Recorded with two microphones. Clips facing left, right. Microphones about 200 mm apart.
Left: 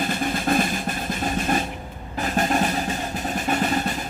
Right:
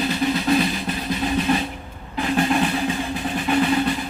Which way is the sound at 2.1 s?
45° left (ahead or behind).